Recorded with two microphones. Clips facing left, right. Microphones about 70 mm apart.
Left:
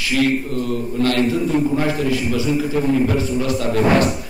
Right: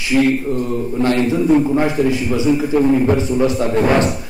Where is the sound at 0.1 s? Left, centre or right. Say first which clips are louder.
Right 4 dB; right.